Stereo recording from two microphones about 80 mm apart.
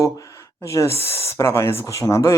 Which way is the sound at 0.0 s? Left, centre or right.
Left.